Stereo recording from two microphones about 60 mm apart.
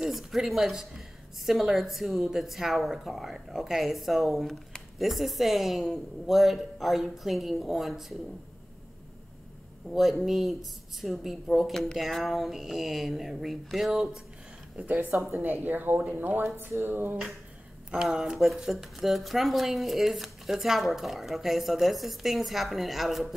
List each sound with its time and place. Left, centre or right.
0.0 s speech: centre
9.8 s speech: centre
14.8 s speech: right
17.9 s speech: centre